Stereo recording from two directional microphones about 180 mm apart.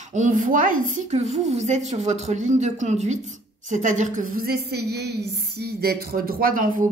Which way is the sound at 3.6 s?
45° right (ahead or behind).